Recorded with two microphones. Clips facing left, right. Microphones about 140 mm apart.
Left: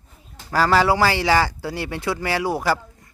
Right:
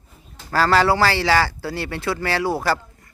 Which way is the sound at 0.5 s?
15° left (ahead or behind).